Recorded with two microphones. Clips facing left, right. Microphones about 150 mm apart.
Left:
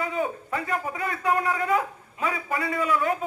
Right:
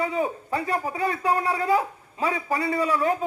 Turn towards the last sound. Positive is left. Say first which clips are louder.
# right 2 dB
turn(degrees=-30)  # may be behind; listen again after turning